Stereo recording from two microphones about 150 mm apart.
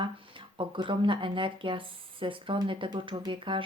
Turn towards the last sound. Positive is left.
turn(degrees=-35)  # may be behind; listen again after turning